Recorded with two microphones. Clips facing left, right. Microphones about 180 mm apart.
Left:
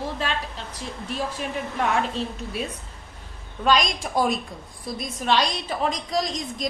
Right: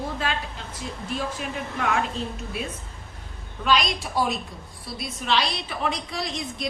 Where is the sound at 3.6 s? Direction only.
45° left (ahead or behind).